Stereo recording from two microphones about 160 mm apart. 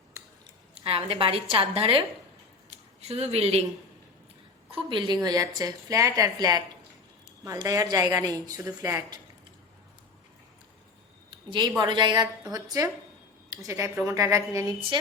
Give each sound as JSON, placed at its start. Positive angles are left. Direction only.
{"t": 0.7, "sound": "a woman's voice", "side_deg": -40}
{"t": 4.7, "sound": "a woman's voice", "side_deg": -30}
{"t": 11.3, "sound": "a sound", "side_deg": -30}
{"t": 11.8, "sound": "a woman's voice", "side_deg": -30}